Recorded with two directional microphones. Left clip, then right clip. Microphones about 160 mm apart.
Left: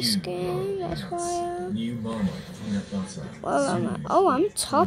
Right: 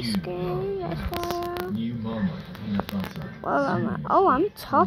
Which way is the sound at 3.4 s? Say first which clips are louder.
Even; 5° left (ahead or behind).